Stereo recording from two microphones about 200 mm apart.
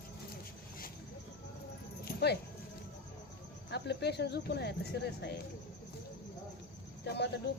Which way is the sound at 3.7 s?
55° left (ahead or behind).